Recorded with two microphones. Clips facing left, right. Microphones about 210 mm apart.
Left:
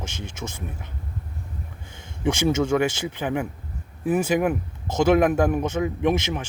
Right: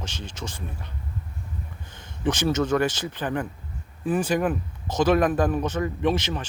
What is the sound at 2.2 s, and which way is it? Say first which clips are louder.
Speech: left 2 dB; 10° left (ahead or behind).